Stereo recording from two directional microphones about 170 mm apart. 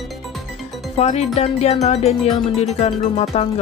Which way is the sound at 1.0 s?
40° left (ahead or behind).